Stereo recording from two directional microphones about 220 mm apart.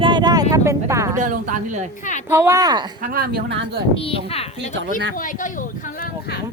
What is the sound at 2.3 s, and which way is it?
Speech, 15° right (ahead or behind).